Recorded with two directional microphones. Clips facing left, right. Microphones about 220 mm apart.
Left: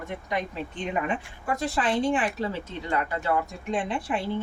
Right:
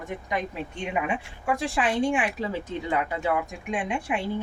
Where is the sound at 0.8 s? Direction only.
10° right (ahead or behind).